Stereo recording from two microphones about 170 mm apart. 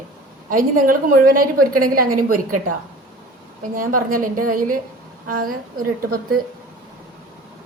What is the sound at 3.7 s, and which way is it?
A woman's voice, 55° right (ahead or behind).